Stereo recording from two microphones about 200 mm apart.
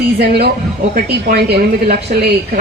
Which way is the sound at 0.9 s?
55° right (ahead or behind).